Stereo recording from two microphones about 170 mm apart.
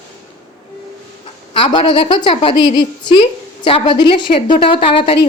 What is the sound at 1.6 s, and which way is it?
A woman's voice, 30° left (ahead or behind).